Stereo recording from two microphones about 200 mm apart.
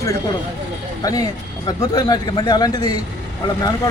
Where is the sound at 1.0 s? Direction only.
20° left (ahead or behind).